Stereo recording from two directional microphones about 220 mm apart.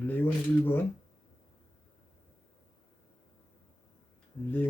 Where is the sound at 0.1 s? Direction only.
10° left (ahead or behind).